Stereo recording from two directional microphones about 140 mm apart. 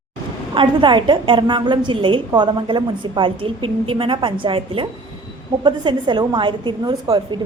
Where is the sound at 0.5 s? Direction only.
35° right (ahead or behind).